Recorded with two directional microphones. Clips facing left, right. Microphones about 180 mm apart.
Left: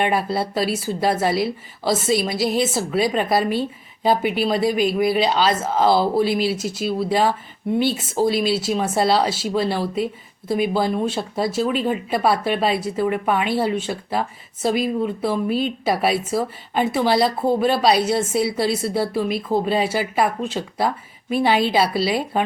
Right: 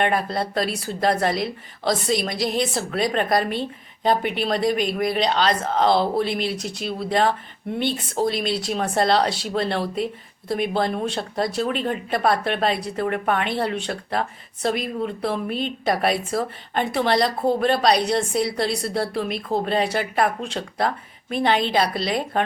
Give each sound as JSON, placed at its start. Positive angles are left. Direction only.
{"t": 0.0, "sound": "speech", "side_deg": 5}